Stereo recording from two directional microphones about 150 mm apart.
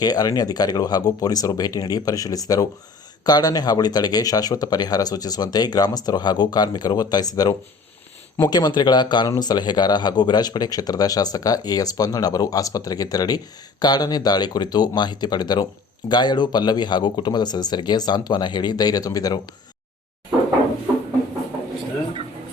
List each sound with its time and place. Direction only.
0.0 s speech: 25° left (ahead or behind)